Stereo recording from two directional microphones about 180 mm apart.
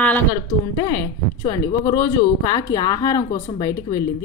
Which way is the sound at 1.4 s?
20° left (ahead or behind).